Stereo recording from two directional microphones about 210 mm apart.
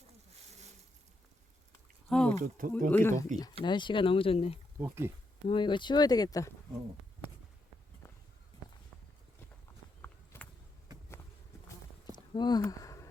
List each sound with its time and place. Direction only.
2.0 s a sound: 5° left (ahead or behind)
2.4 s speech: 40° right (ahead or behind)
2.9 s speech: 10° left (ahead or behind)
3.6 s speech: 20° left (ahead or behind)
4.8 s speech: 10° right (ahead or behind)
5.5 s speech: 20° left (ahead or behind)
10.0 s walk: 5° left (ahead or behind)
12.3 s speech: 20° left (ahead or behind)
12.6 s a sound: 15° left (ahead or behind)